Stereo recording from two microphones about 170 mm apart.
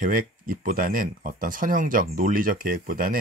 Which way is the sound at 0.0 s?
55° right (ahead or behind).